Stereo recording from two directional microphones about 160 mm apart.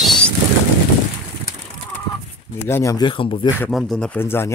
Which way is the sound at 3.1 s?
35° left (ahead or behind).